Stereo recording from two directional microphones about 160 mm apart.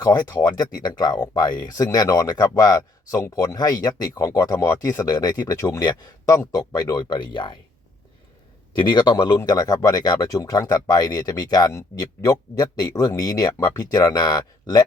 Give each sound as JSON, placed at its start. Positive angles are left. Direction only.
{"t": 0.0, "sound": "speech", "side_deg": 25}
{"t": 8.8, "sound": "speech", "side_deg": 30}